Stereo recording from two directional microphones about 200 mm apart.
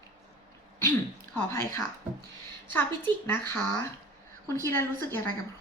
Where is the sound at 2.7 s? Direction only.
10° left (ahead or behind).